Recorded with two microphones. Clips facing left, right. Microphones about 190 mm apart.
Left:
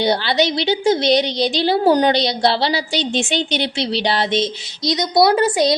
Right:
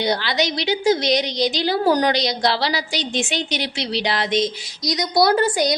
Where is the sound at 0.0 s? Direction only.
30° left (ahead or behind).